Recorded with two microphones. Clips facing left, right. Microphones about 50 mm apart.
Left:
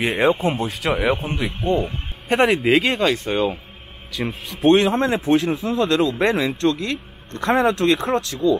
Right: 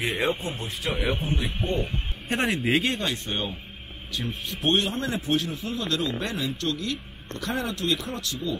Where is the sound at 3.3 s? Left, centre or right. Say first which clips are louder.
Left 10 dB; left.